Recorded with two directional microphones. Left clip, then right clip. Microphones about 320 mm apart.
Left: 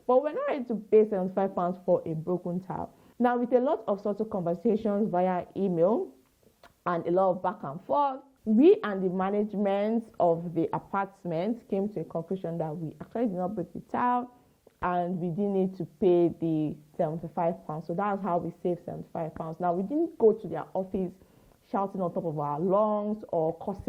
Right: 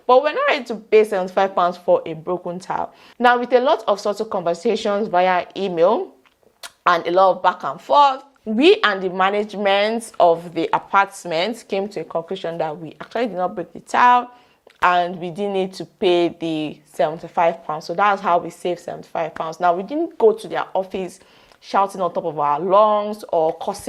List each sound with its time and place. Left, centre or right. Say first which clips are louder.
0.1 s a woman's voice: right 10 dB; centre
23.2 s speech: right 9 dB; right
23.5 s a woman's voice: right 10 dB; centre